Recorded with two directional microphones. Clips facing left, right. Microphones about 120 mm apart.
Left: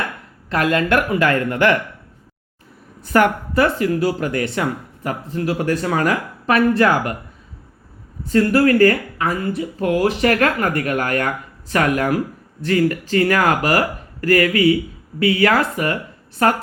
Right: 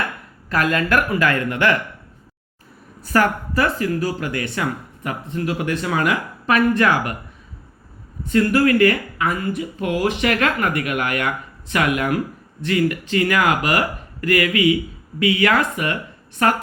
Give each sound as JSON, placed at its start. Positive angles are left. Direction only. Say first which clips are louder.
{"t": 0.5, "sound": "speech", "louder": "left 2 dB", "side_deg": 25}
{"t": 3.0, "sound": "speech", "louder": "left 3 dB", "side_deg": 25}
{"t": 8.2, "sound": "speech", "louder": "left 2 dB", "side_deg": 35}